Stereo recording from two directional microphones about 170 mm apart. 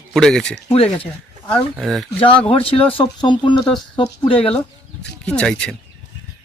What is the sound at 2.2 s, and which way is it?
Speech, 30° left (ahead or behind).